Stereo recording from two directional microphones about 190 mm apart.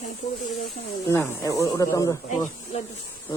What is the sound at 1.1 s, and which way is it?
Speech, 15° left (ahead or behind).